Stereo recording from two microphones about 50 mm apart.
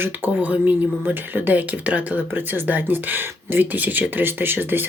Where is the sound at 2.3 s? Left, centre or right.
Right.